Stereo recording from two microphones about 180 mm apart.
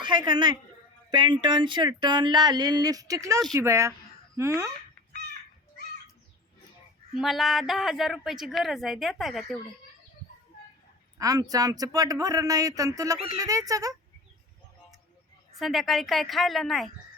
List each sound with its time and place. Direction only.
0.0 s a woman's voice: 25° right (ahead or behind)
7.2 s a woman's voice: centre (ahead or behind)
11.2 s speech: 20° right (ahead or behind)
15.5 s a woman's voice: centre (ahead or behind)